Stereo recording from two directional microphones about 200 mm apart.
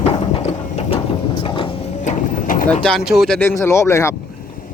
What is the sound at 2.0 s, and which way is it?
Printer, 40° left (ahead or behind).